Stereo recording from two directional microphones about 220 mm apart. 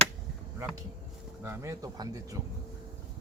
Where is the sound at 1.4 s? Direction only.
10° right (ahead or behind).